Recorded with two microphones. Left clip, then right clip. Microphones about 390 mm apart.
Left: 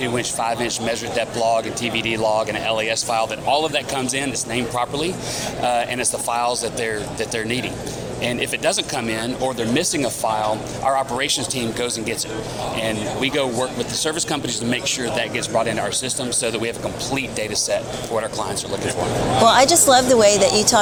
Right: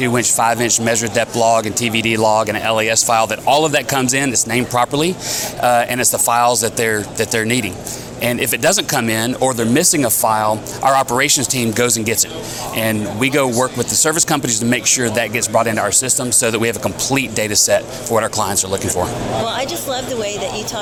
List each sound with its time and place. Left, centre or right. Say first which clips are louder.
0.0 s speech: right 7 dB; right
19.5 s speech: left 8 dB; left